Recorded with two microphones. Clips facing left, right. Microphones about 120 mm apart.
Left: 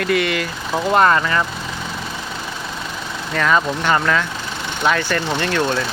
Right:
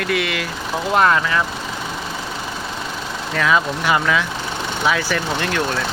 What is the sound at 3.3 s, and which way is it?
Speech, centre (ahead or behind).